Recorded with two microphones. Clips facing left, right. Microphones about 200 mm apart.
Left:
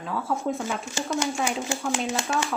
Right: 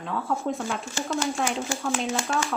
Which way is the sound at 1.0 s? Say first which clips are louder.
Even; 15° left (ahead or behind).